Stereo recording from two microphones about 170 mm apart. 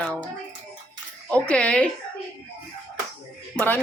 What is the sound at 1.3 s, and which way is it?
Speech, 5° left (ahead or behind).